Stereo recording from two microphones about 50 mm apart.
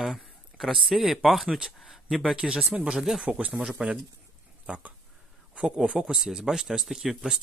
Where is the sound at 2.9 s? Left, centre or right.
Centre.